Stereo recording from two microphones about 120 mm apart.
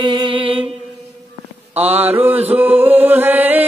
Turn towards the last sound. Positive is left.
turn(degrees=-15)  # may be behind; listen again after turning